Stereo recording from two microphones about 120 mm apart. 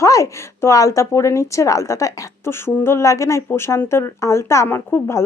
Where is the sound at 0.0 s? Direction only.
25° left (ahead or behind).